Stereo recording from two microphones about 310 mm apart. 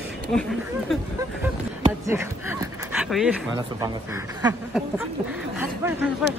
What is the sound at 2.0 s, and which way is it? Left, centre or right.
Speech, centre.